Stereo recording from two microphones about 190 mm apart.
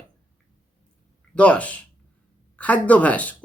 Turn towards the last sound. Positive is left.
turn(degrees=5)  # may be behind; listen again after turning